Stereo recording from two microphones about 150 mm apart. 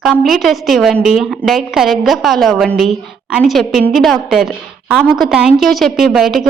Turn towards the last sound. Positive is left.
turn(degrees=0)  # may be behind; listen again after turning